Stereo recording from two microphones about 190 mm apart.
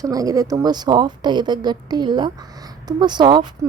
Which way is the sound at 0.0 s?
20° right (ahead or behind).